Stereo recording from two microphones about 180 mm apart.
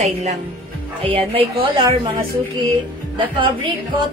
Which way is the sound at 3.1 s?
30° right (ahead or behind).